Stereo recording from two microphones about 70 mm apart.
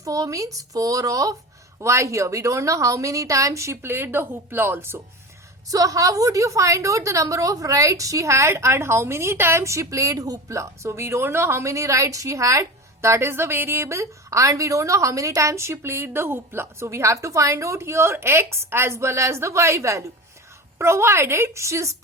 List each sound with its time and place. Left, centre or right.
0.0 s speech: right
1.8 s a woman's voice: right
3.8 s a woman's voice: right
5.6 s a woman's voice: right